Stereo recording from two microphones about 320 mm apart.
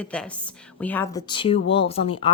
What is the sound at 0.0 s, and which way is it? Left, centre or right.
A woman's voice, centre.